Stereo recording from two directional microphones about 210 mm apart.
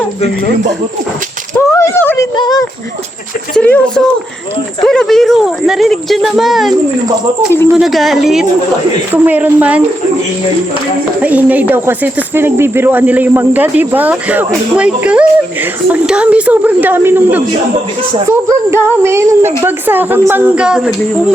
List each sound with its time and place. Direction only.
1.7 s a sound: 10° left (ahead or behind)
2.3 s speech: 20° left (ahead or behind)
3.5 s speech: 5° left (ahead or behind)
11.2 s speech: 5° right (ahead or behind)